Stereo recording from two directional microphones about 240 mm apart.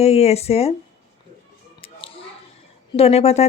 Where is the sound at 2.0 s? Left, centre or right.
Left.